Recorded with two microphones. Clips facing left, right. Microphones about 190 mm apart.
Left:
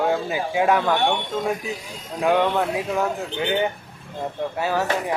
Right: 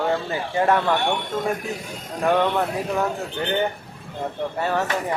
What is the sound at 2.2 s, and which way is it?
Speech, 5° left (ahead or behind).